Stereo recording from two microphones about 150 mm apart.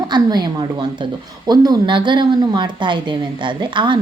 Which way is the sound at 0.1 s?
30° right (ahead or behind).